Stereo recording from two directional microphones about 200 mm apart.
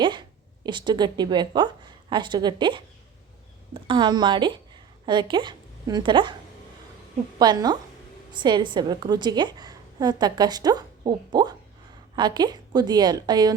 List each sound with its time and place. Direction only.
0.0 s a woman's voice: 25° right (ahead or behind)
7.3 s a woman's voice: 20° right (ahead or behind)